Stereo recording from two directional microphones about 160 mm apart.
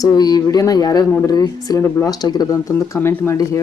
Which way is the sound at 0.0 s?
25° left (ahead or behind).